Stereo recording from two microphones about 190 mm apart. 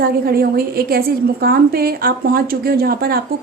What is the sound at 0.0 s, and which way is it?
A woman's voice, 55° right (ahead or behind).